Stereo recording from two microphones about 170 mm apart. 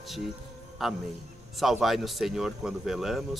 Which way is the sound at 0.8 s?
Centre (ahead or behind).